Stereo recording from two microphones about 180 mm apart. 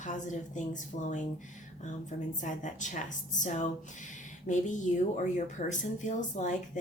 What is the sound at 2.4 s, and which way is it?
Speech, 45° left (ahead or behind).